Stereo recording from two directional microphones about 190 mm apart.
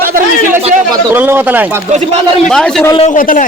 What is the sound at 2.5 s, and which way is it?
Speech, centre (ahead or behind).